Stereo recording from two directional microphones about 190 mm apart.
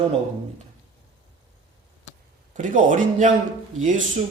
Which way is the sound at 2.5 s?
45° right (ahead or behind).